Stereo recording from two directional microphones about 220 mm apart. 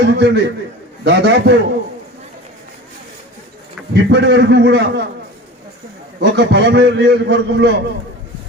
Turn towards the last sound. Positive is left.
turn(degrees=-50)  # may be behind; listen again after turning